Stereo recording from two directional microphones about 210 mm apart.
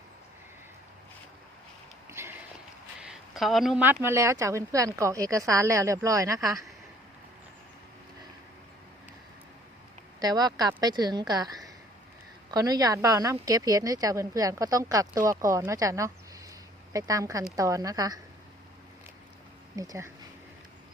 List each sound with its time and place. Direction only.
2.0 s a sound: 10° right (ahead or behind)
4.0 s a woman's voice: 15° right (ahead or behind)
10.2 s a woman's voice: 20° right (ahead or behind)
19.7 s a woman's voice: 15° right (ahead or behind)